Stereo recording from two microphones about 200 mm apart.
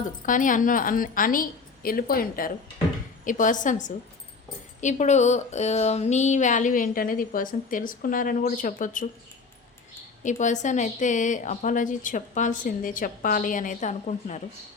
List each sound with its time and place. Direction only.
0.3 s a woman's voice: 40° left (ahead or behind)
10.2 s speech: 40° left (ahead or behind)